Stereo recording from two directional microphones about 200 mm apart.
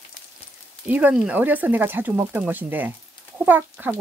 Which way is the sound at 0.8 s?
5° right (ahead or behind).